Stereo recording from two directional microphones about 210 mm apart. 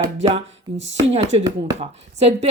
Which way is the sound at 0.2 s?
30° right (ahead or behind).